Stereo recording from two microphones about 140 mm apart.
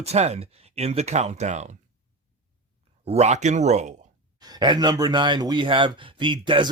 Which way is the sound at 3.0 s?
50° right (ahead or behind).